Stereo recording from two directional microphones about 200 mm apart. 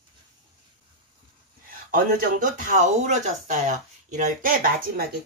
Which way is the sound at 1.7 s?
45° right (ahead or behind).